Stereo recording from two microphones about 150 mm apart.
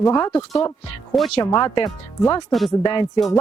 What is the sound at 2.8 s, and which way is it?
Speech, 30° left (ahead or behind).